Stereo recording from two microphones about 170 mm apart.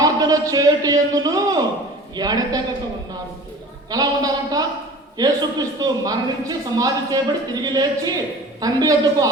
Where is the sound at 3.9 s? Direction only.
20° right (ahead or behind).